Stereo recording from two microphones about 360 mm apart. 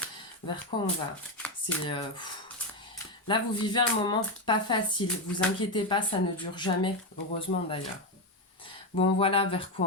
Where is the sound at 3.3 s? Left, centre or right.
Centre.